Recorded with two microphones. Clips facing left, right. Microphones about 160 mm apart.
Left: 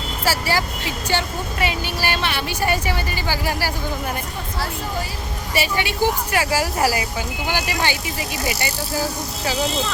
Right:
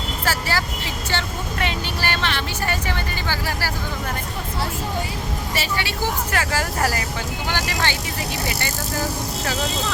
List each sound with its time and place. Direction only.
0.3 s vehicle: 10° left (ahead or behind)
1.1 s speech: 10° left (ahead or behind)
5.5 s speech: 15° left (ahead or behind)